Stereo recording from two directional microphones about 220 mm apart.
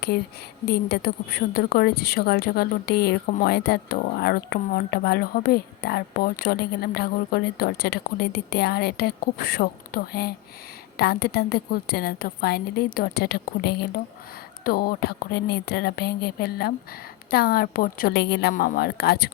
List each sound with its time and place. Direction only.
0.7 s a woman's voice: 45° left (ahead or behind)